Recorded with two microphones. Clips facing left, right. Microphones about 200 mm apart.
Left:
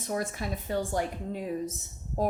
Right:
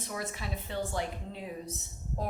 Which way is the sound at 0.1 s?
45° left (ahead or behind).